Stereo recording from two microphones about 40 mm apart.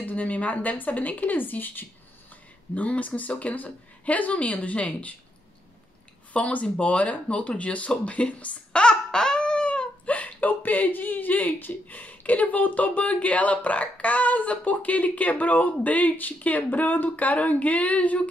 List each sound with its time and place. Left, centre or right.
0.0 s speech: left
2.7 s speech: left
6.3 s speech: left
8.8 s a sound: centre
10.0 s speech: left